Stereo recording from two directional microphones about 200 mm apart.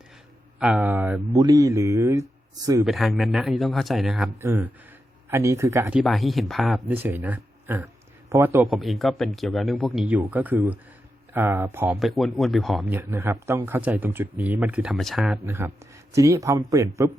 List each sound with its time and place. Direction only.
0.6 s a man's voice: 5° right (ahead or behind)
2.8 s speech: centre (ahead or behind)
4.4 s speech: 10° right (ahead or behind)
6.0 s a man's voice: centre (ahead or behind)
8.6 s a man's voice: centre (ahead or behind)
11.9 s a man's voice: centre (ahead or behind)
15.4 s a man's voice: 15° right (ahead or behind)